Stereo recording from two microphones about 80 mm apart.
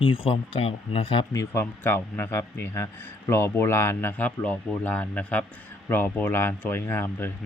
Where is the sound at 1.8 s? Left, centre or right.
Left.